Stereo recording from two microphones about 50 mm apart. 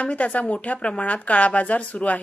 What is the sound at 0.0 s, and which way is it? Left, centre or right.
A woman's voice, left.